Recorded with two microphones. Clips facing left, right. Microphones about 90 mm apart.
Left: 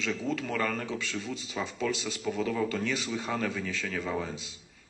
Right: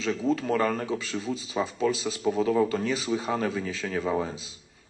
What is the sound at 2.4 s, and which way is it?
Speech, 20° right (ahead or behind).